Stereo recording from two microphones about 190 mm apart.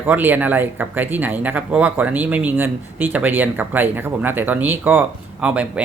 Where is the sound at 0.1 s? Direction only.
10° right (ahead or behind).